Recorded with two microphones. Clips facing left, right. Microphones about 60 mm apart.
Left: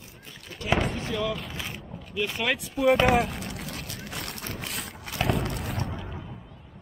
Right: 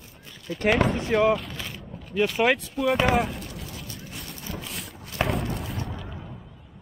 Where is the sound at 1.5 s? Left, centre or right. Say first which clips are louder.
Even; centre.